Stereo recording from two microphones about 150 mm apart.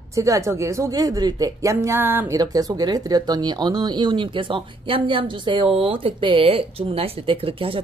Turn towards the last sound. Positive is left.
turn(degrees=-35)  # may be behind; listen again after turning